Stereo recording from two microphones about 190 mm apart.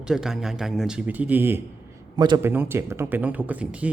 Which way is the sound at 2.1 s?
20° right (ahead or behind).